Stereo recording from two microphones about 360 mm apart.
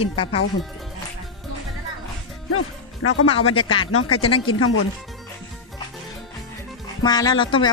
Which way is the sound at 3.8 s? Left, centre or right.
Left.